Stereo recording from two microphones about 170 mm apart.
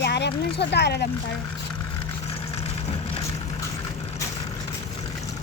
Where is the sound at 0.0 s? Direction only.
80° left.